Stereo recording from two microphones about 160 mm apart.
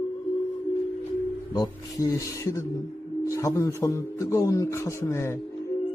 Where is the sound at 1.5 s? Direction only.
25° left (ahead or behind).